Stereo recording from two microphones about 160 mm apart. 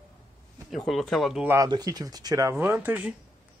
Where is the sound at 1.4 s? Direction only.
20° right (ahead or behind).